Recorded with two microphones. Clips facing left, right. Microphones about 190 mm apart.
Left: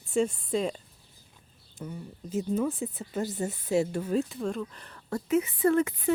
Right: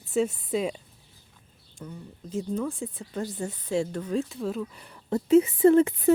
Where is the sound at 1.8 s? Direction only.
5° left (ahead or behind); by 5.9 s 30° right (ahead or behind).